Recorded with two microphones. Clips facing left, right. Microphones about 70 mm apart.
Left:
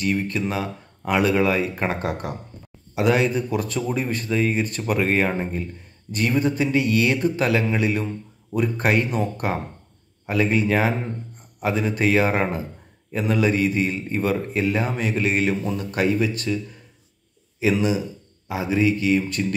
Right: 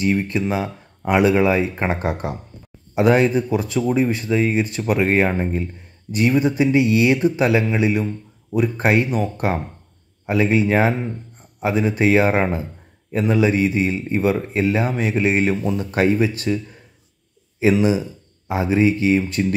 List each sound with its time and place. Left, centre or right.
0.0 s speech: centre
10.2 s speech: centre
18.5 s speech: right